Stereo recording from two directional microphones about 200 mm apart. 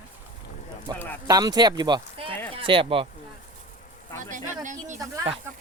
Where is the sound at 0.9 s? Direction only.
20° right (ahead or behind).